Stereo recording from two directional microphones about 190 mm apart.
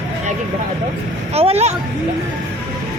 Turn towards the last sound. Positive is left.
turn(degrees=-35)  # may be behind; listen again after turning